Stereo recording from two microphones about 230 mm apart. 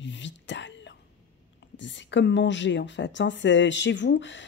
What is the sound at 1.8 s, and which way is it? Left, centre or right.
A woman's voice, left.